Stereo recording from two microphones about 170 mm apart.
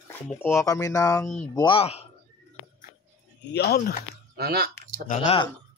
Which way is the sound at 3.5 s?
65° left (ahead or behind).